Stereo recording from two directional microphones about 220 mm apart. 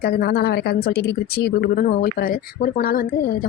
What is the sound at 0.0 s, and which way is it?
Speech, 45° left (ahead or behind).